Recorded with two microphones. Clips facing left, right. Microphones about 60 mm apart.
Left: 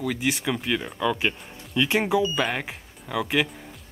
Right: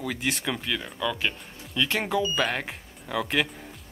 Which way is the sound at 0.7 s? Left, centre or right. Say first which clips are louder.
Left 4 dB; centre.